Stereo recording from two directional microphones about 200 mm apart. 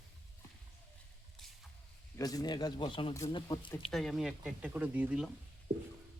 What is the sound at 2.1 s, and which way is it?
Speech, 20° left (ahead or behind).